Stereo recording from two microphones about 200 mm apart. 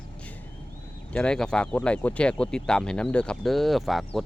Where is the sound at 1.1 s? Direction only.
5° left (ahead or behind).